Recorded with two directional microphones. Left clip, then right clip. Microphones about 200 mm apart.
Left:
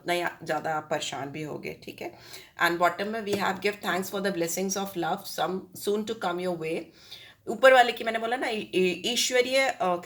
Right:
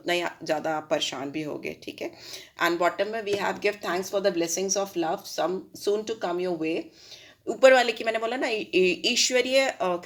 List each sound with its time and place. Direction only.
0.0 s speech: 35° right (ahead or behind)